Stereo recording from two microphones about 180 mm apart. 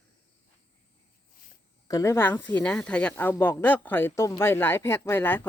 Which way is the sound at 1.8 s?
20° left (ahead or behind).